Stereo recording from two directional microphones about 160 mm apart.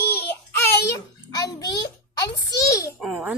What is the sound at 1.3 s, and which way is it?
A child's voice, 25° left (ahead or behind).